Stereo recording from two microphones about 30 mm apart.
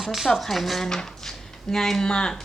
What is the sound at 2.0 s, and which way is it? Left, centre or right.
Speech, left.